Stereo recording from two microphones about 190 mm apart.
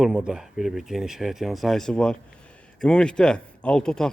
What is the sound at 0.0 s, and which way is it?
A man's voice, 5° right (ahead or behind).